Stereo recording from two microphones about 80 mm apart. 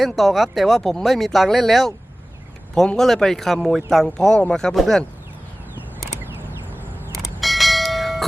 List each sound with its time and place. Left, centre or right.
0.0 s speech: centre
7.4 s bell: centre